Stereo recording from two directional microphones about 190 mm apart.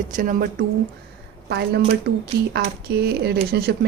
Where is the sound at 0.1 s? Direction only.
45° right (ahead or behind).